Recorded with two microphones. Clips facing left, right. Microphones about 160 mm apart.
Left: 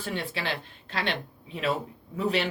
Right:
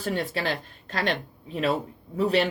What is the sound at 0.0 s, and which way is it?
Speech, 40° right (ahead or behind).